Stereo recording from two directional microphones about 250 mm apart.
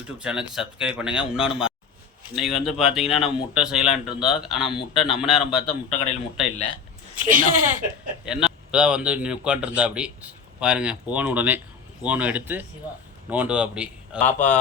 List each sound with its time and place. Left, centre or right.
0.2 s speech: centre
7.2 s speech: right
8.2 s speech: centre
14.2 s a man's voice: centre